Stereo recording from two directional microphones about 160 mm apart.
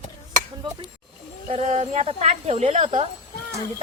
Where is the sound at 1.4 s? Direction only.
45° right (ahead or behind).